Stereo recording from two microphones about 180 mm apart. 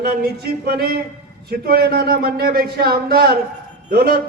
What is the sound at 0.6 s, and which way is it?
Speech, 60° right (ahead or behind).